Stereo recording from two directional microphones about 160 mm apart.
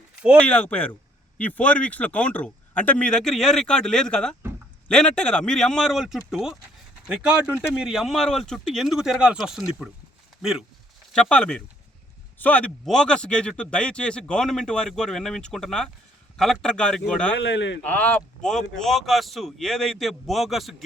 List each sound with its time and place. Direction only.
0.3 s speech: 5° left (ahead or behind)
11.1 s speech: 5° left (ahead or behind)
17.4 s a man's voice: 90° left
17.8 s speech: 10° left (ahead or behind)